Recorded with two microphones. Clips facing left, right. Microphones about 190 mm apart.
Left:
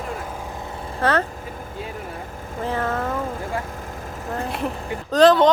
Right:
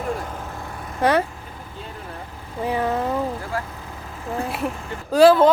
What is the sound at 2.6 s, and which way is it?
Speech, 15° right (ahead or behind).